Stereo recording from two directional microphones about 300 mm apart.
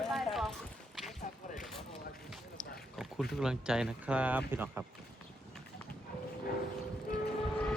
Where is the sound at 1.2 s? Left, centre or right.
Left.